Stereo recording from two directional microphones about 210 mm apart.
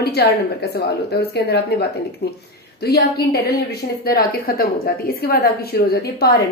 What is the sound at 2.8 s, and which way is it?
A woman's voice, 50° left (ahead or behind).